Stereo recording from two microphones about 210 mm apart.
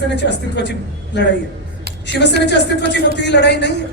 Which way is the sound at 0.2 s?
55° left (ahead or behind).